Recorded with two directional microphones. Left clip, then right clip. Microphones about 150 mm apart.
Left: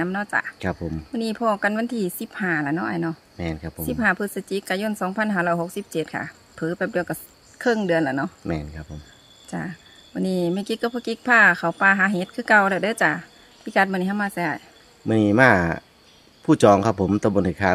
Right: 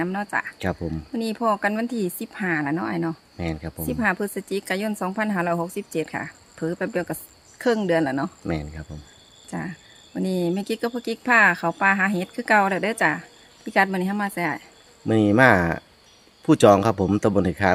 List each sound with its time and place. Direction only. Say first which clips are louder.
0.0 s speech: left 2 dB; 15° left (ahead or behind)
3.3 s speech: even; 15° right (ahead or behind)
3.8 s speech: left 2 dB; 15° left (ahead or behind)
8.4 s speech: even; 15° right (ahead or behind)
9.5 s speech: left 1 dB; 15° left (ahead or behind)
15.0 s speech: even; 15° right (ahead or behind)